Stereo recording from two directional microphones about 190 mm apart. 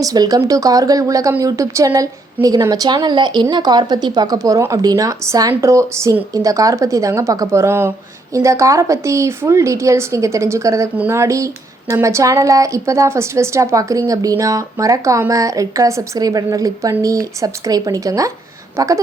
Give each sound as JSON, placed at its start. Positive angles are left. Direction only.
{"t": 0.0, "sound": "speech", "side_deg": -20}